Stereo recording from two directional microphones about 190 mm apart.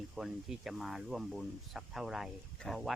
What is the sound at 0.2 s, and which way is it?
Speech, 5° right (ahead or behind).